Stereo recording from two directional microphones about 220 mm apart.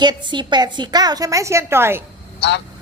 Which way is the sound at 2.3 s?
50° left (ahead or behind).